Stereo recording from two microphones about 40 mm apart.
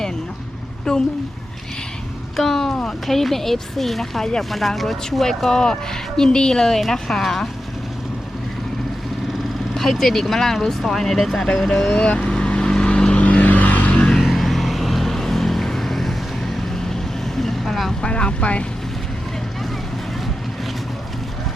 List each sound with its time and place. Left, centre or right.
0.9 s speech: centre
2.3 s speech: centre
5.2 s speech: centre
9.7 s speech: centre
11.9 s speech: left
12.3 s vehicle: left
13.1 s vehicle: left
14.2 s vehicle: centre
18.0 s boat: left